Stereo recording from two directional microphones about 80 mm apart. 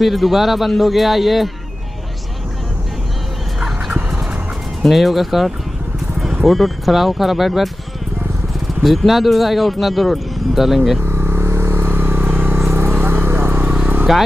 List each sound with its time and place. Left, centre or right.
0.0 s speech: centre
4.8 s speech: centre
8.8 s speech: centre
11.0 s vehicle: right
12.9 s a sound: right
14.1 s speech: centre